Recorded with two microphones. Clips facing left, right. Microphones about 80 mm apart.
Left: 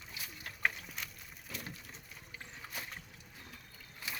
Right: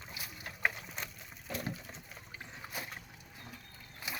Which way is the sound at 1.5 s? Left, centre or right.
Right.